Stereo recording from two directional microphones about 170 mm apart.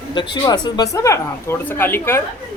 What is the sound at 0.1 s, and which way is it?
Speech, 25° left (ahead or behind).